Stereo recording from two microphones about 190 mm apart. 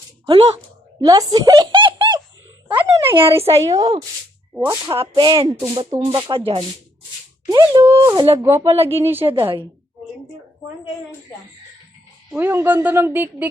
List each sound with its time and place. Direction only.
0.3 s speech: 30° right (ahead or behind)
1.0 s a sound: 20° right (ahead or behind)
3.7 s speech: 20° right (ahead or behind)
7.5 s speech: 20° right (ahead or behind)
8.6 s speech: 30° right (ahead or behind)
9.0 s speech: 10° right (ahead or behind)
9.3 s speech: 30° right (ahead or behind)
12.3 s speech: 10° right (ahead or behind)